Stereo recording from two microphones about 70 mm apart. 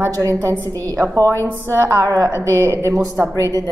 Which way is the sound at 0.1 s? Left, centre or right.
Right.